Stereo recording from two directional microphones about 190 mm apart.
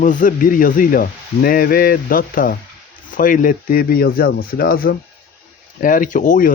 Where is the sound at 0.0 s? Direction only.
45° left (ahead or behind).